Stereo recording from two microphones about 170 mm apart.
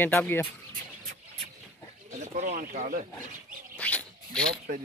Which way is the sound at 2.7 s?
45° right (ahead or behind).